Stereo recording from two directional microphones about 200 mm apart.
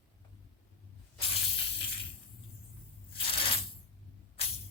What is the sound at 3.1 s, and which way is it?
Coin, 25° left (ahead or behind).